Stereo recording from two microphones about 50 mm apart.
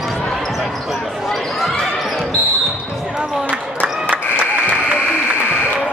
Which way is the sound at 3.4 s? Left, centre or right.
Right.